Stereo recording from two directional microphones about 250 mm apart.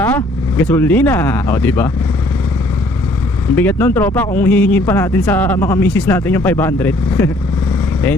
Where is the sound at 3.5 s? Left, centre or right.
Centre.